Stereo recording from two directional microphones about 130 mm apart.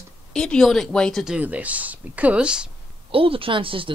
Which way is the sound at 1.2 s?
10° right (ahead or behind).